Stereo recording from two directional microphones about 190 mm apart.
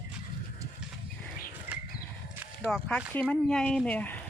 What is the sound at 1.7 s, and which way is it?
Horse, 10° right (ahead or behind).